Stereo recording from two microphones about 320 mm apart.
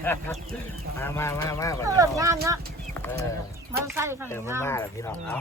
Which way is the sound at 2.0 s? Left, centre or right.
Centre.